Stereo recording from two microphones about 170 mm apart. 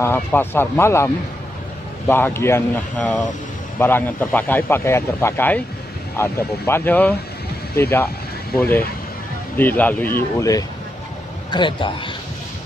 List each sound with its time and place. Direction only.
0.0 s speech: 15° left (ahead or behind)
11.5 s speech: 30° left (ahead or behind)